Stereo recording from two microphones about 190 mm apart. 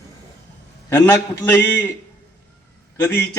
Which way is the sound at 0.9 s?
15° left (ahead or behind).